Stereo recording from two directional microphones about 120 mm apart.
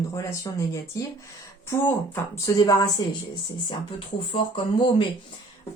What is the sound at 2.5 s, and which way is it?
Speech, 30° left (ahead or behind).